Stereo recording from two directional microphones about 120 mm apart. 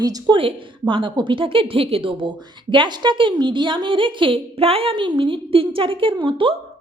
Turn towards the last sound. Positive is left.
turn(degrees=-45)  # may be behind; listen again after turning